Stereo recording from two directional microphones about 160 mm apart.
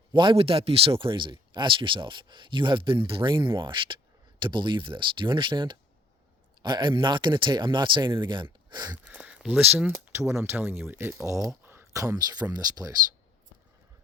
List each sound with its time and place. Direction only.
0.1 s speech: 30° right (ahead or behind)
8.7 s a sound: 25° right (ahead or behind)
9.0 s speech: 10° right (ahead or behind); by 13.0 s 25° right (ahead or behind)